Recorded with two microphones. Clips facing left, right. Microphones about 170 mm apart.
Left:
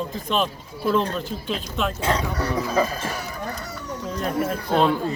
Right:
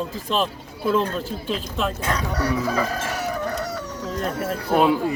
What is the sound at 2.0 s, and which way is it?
Chicken, 25° left (ahead or behind).